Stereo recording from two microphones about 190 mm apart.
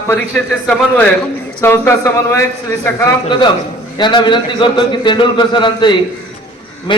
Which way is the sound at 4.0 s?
25° left (ahead or behind).